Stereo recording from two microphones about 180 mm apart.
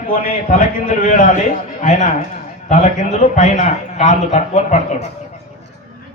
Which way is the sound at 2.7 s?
40° left (ahead or behind).